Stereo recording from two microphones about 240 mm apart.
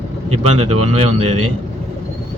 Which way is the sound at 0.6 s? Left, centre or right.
Right.